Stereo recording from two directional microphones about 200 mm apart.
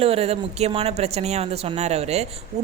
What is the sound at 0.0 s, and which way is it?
A woman's voice, 30° right (ahead or behind).